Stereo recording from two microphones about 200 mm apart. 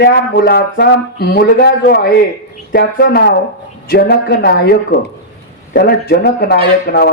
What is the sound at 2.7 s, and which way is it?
A woman's voice, 50° left (ahead or behind).